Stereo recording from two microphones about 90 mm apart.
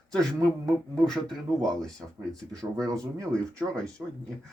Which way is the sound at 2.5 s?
40° right (ahead or behind).